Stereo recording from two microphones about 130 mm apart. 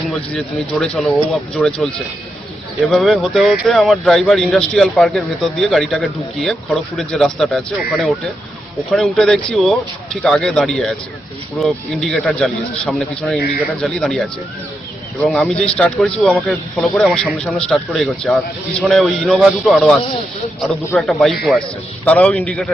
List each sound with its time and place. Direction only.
0.1 s a man's voice: 5° left (ahead or behind)